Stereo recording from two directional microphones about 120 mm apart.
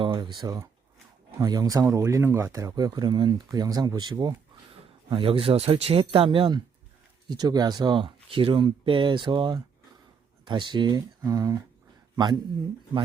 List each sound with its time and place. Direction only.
0.0 s speech: 40° right (ahead or behind)
5.0 s speech: 45° right (ahead or behind)
7.3 s speech: 35° right (ahead or behind)